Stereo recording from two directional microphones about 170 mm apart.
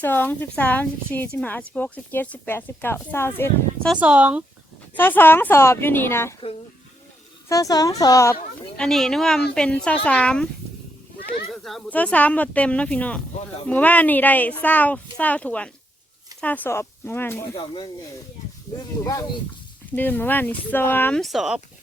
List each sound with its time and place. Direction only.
0.0 s speech: 10° left (ahead or behind)
3.8 s speech: 10° right (ahead or behind)
4.9 s speech: 10° left (ahead or behind)
7.4 s speech: 20° left (ahead or behind)
8.8 s speech: 5° left (ahead or behind)
11.6 s speech: 5° left (ahead or behind)
19.0 s speech: 25° left (ahead or behind)
20.0 s speech: 10° left (ahead or behind)
21.2 s speech: centre (ahead or behind)